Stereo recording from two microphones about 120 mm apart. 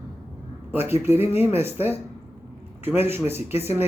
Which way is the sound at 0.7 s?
20° right (ahead or behind).